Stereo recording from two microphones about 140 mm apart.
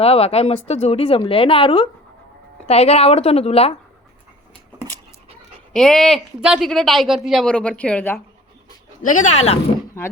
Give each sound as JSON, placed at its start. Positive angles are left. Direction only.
{"t": 0.0, "sound": "speech", "side_deg": 45}
{"t": 5.7, "sound": "a woman's voice", "side_deg": 5}
{"t": 9.0, "sound": "speech", "side_deg": 65}